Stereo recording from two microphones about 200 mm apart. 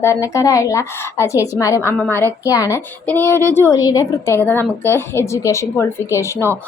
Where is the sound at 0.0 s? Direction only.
15° left (ahead or behind).